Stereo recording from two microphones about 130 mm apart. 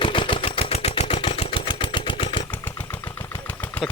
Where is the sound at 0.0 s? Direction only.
40° left (ahead or behind).